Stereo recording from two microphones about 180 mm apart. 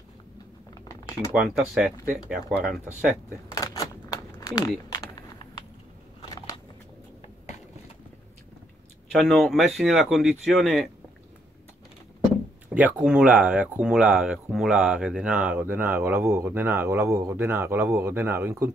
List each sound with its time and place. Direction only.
1.3 s speech: centre (ahead or behind)
3.5 s scissors: 20° left (ahead or behind)
4.4 s a sound: 20° left (ahead or behind)
6.2 s a sound: 20° left (ahead or behind)
9.1 s speech: centre (ahead or behind)
12.6 s speech: 10° right (ahead or behind)